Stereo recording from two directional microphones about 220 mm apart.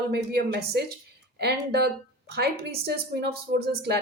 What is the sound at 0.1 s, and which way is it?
Speech, 45° right (ahead or behind).